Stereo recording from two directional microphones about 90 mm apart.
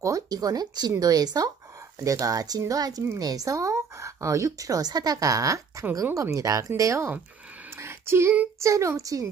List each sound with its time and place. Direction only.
0.0 s speech: 40° right (ahead or behind)
7.7 s a sound: 30° right (ahead or behind)
8.5 s speech: 35° right (ahead or behind)